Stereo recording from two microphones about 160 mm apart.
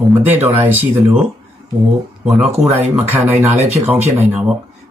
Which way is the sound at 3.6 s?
40° right (ahead or behind).